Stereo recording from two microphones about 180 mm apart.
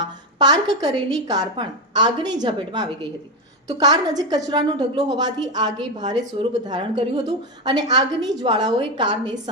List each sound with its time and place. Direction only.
0.0 s a woman's voice: 20° right (ahead or behind)